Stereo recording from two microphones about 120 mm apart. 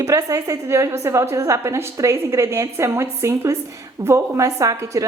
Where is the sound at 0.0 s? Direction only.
30° right (ahead or behind).